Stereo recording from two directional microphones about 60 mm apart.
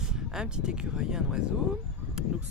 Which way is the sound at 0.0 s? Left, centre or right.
Centre.